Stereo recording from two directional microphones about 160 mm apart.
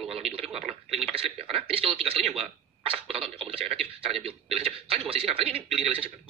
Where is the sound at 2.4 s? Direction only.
35° right (ahead or behind).